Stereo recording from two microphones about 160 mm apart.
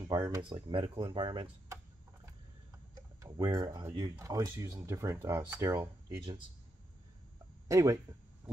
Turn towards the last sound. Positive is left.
turn(degrees=-20)  # may be behind; listen again after turning